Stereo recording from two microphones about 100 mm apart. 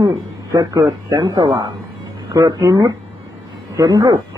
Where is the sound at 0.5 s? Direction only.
35° right (ahead or behind).